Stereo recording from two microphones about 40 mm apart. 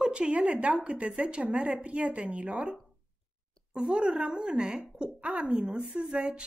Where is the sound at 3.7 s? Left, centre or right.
Centre.